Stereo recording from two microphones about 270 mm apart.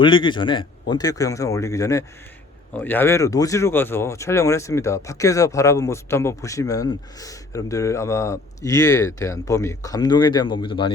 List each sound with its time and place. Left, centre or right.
0.0 s speech: centre